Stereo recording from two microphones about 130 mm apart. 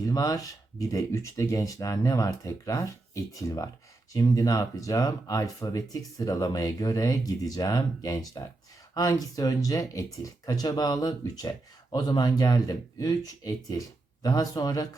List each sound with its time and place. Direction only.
0.0 s speech: 25° left (ahead or behind)